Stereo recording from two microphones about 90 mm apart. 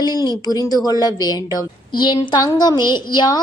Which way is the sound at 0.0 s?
50° left (ahead or behind).